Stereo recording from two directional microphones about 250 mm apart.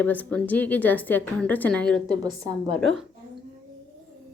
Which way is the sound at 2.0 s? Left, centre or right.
Centre.